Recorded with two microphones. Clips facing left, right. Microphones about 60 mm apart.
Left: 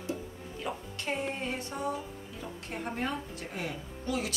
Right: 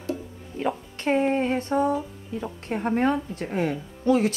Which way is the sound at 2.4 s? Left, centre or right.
Right.